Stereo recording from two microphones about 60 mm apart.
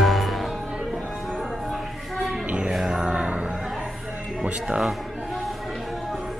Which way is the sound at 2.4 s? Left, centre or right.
Centre.